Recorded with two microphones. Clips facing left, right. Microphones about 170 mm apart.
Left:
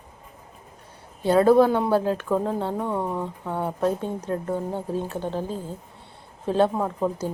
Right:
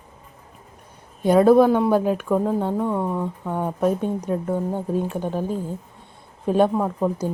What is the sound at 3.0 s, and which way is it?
Speech, 10° left (ahead or behind).